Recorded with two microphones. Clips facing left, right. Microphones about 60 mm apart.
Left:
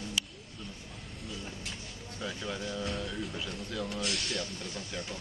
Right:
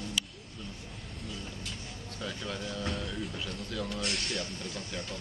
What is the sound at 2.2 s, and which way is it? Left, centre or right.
Speech, centre.